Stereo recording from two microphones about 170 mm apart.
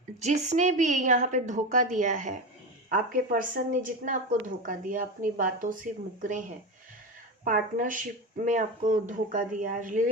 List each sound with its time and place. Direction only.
0.2 s speech: 45° right (ahead or behind)
7.4 s speech: 50° right (ahead or behind)